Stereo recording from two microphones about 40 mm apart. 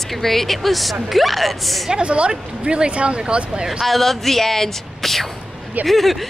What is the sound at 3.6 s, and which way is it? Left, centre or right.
Speech, centre.